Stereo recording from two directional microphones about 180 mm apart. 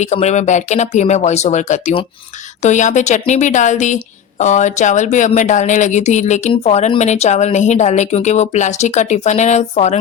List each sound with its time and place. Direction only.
0.0 s a woman's voice: 40° left (ahead or behind)